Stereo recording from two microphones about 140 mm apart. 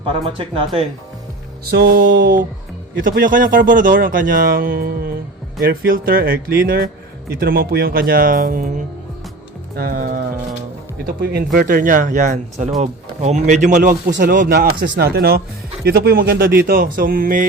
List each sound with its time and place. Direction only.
0.0 s speech: 40° right (ahead or behind)
1.9 s speech: 85° right
9.7 s speech: 90° right